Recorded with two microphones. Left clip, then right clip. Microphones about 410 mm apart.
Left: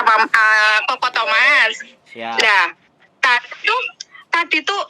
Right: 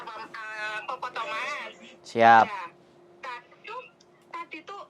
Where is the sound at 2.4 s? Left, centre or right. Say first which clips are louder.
Left 12 dB; left.